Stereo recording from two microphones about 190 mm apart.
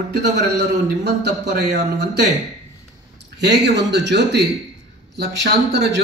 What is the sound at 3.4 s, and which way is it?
Speech, 65° right (ahead or behind).